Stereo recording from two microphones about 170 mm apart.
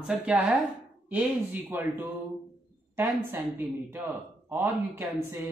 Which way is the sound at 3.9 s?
10° right (ahead or behind).